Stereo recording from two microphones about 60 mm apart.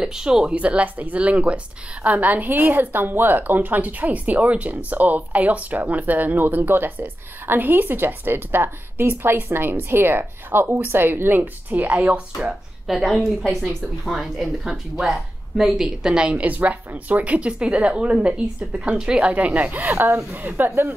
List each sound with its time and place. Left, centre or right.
0.0 s a woman's voice: centre
12.8 s a woman's voice: centre; by 20.9 s right